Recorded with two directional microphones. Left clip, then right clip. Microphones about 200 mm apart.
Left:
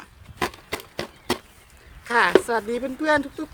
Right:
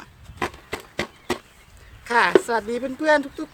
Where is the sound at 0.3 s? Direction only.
35° left (ahead or behind).